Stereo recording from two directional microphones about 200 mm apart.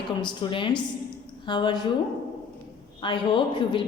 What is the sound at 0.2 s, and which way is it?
A woman's voice, 25° left (ahead or behind).